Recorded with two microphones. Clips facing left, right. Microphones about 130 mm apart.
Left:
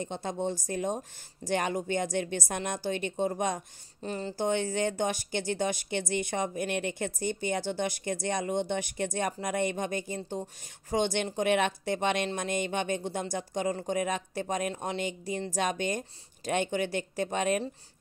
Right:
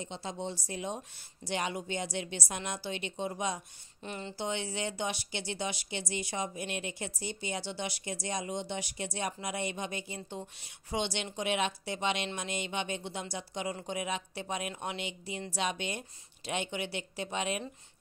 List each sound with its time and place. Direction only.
0.0 s speech: 50° left (ahead or behind)
4.0 s speech: 35° left (ahead or behind)